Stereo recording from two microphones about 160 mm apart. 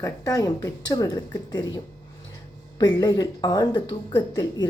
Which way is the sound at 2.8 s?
25° left (ahead or behind).